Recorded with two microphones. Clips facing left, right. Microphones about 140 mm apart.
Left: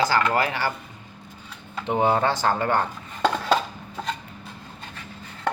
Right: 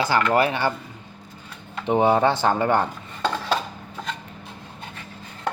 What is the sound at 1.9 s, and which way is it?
Speech, 20° right (ahead or behind).